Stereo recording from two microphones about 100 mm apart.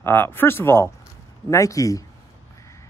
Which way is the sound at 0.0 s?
20° left (ahead or behind).